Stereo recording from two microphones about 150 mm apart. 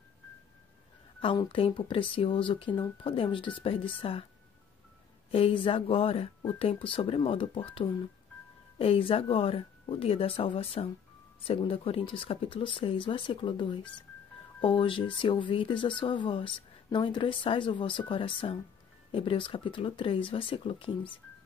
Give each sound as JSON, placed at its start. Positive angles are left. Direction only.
{"t": 1.2, "sound": "speech", "side_deg": 35}
{"t": 5.3, "sound": "speech", "side_deg": 35}